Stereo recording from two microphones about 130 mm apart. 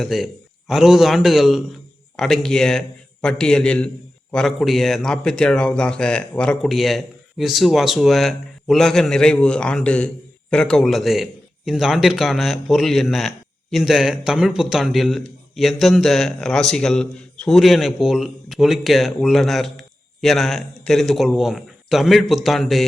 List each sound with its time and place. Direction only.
0.0 s a man's voice: centre (ahead or behind)